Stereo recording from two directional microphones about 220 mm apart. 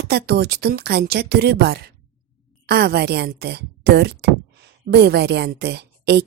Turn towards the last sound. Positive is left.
turn(degrees=-50)  # may be behind; listen again after turning